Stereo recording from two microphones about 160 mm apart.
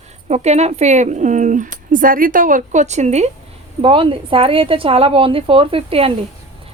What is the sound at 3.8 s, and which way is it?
A woman's voice, 35° right (ahead or behind).